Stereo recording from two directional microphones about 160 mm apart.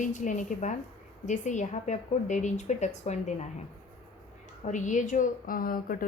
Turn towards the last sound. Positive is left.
turn(degrees=65)  # may be behind; listen again after turning